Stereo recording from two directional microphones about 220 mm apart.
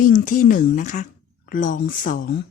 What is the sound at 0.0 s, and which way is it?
Speech, 35° left (ahead or behind).